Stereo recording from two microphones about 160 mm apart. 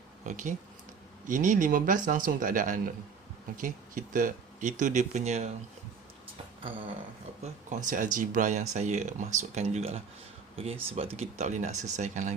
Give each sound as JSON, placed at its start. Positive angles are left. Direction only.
{"t": 0.3, "sound": "speech", "side_deg": -50}
{"t": 7.4, "sound": "speech", "side_deg": -50}